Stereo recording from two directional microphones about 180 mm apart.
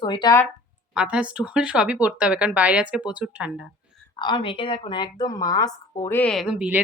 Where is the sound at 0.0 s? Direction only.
25° left (ahead or behind).